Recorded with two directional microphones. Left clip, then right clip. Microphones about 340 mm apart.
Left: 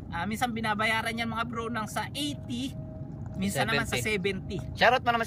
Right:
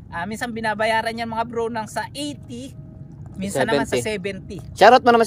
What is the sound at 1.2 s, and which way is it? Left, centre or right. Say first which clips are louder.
Speech: right 8 dB; centre.